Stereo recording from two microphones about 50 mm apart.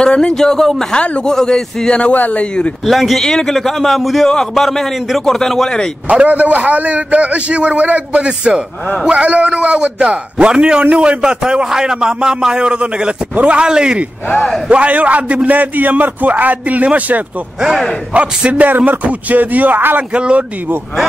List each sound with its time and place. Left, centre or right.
0.0 s a man's voice: centre
0.9 s a man's voice: left
2.1 s speech: left
2.9 s a man's voice: centre
3.3 s a man's voice: centre
6.0 s a man's voice: right
14.7 s a man's voice: right
20.2 s a man's voice: right